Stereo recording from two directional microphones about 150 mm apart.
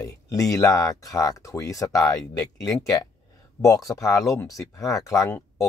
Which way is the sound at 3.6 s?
20° left (ahead or behind).